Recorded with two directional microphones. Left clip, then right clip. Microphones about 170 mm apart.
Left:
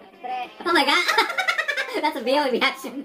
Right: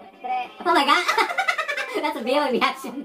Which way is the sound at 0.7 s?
5° left (ahead or behind).